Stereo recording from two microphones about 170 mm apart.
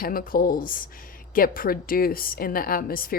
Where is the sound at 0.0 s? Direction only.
55° left (ahead or behind).